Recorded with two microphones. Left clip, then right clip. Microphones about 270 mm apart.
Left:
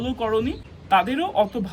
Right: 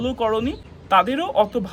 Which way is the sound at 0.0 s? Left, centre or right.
Centre.